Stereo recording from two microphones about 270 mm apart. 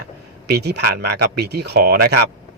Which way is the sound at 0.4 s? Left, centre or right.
Right.